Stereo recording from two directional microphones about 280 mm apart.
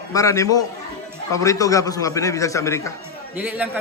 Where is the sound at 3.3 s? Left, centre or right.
Centre.